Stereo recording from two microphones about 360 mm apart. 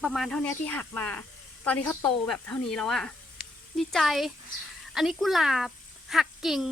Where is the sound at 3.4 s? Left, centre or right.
Centre.